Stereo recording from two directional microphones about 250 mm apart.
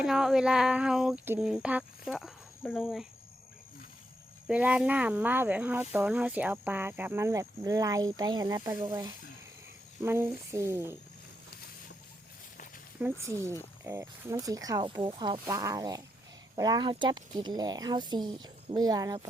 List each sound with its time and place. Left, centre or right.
0.0 s a sound: centre
4.4 s speech: centre
13.0 s speech: centre